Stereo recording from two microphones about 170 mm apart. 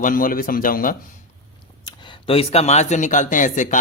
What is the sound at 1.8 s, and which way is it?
A man's voice, 30° left (ahead or behind).